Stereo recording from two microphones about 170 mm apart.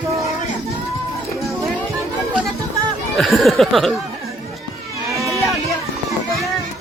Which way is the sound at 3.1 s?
Centre (ahead or behind).